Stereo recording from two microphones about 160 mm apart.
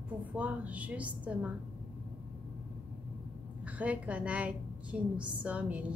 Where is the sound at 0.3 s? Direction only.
10° right (ahead or behind).